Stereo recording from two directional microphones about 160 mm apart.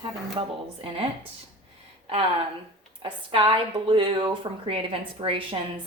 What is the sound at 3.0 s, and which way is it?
A woman's voice, 30° right (ahead or behind).